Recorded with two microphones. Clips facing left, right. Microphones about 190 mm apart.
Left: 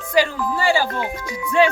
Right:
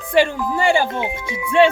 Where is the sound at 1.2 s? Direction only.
5° right (ahead or behind).